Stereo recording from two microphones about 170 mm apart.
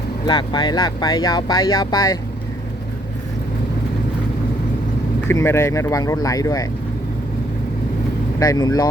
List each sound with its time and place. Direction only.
0.3 s speech: 25° left (ahead or behind)
5.3 s speech: 15° left (ahead or behind)
8.4 s speech: 20° left (ahead or behind)